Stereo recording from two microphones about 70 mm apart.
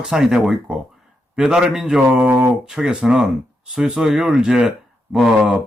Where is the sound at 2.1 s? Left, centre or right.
Right.